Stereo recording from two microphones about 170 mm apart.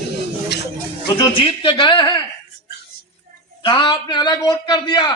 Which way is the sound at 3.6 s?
30° left (ahead or behind).